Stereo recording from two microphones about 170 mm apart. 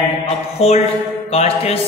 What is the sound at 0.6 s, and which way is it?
A man's voice, 35° left (ahead or behind).